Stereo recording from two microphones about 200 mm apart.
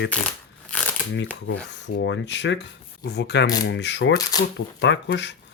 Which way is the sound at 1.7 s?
60° left (ahead or behind).